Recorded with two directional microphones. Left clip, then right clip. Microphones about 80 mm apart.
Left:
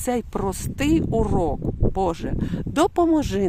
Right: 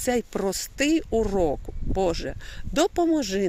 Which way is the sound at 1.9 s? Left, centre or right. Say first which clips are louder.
Right 1 dB; left.